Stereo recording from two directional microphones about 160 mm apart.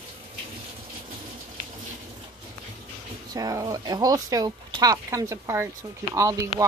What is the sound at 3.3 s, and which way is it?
Speech, 25° right (ahead or behind).